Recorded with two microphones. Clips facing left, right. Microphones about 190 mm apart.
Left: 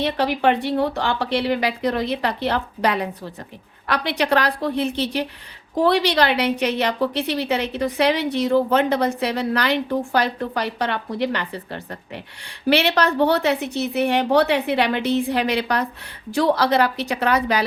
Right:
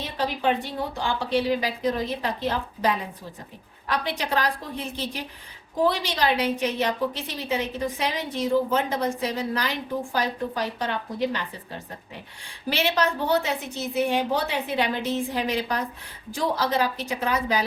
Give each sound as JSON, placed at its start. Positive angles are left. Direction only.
{"t": 0.0, "sound": "a woman's voice", "side_deg": 70}